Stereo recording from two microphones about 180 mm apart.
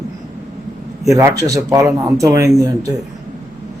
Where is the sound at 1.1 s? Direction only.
15° right (ahead or behind).